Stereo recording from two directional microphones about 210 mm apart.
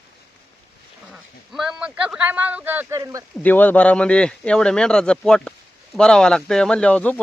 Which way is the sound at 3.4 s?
10° left (ahead or behind).